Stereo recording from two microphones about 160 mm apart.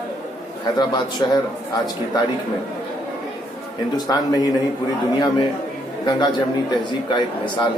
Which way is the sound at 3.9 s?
25° left (ahead or behind).